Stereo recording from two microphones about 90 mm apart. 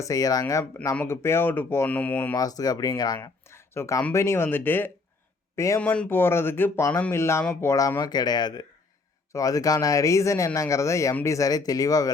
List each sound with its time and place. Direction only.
0.0 s speech: 40° left (ahead or behind)
1.0 s speech: 30° left (ahead or behind)
2.3 s speech: 45° left (ahead or behind)
3.2 s a sound: 30° left (ahead or behind)
4.1 s speech: 30° left (ahead or behind)
5.5 s speech: 35° left (ahead or behind)
5.8 s speech: 15° left (ahead or behind); by 8.6 s 50° left (ahead or behind)
9.3 s speech: 40° left (ahead or behind)